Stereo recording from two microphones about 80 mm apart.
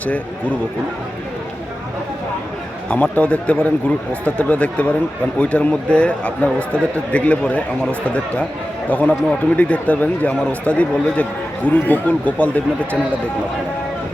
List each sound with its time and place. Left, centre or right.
2.9 s speech: centre